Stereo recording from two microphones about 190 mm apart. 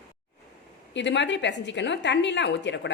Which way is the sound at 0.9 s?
70° left (ahead or behind).